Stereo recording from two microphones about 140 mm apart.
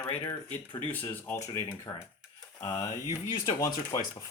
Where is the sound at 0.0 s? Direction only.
20° left (ahead or behind).